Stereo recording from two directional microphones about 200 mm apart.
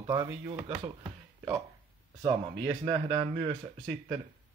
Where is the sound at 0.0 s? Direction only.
20° right (ahead or behind).